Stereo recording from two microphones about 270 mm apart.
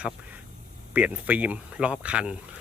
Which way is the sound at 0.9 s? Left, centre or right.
Centre.